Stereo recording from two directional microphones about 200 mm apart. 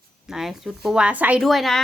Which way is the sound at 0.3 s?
Centre (ahead or behind).